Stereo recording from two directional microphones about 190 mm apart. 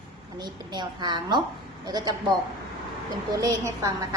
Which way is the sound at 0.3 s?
20° right (ahead or behind).